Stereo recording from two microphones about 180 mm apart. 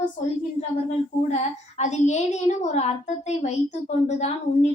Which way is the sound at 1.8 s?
40° left (ahead or behind).